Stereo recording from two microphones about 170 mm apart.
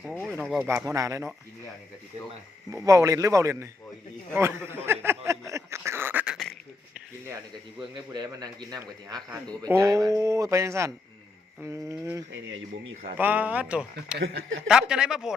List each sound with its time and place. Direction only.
0.0 s speech: centre (ahead or behind)
0.6 s speech: 15° right (ahead or behind)
2.7 s speech: 20° right (ahead or behind)
4.9 s a sound: 15° right (ahead or behind)
7.8 s a man's voice: 25° right (ahead or behind); by 14.2 s 5° right (ahead or behind)
14.2 s speech: 80° right
14.7 s speech: 5° right (ahead or behind)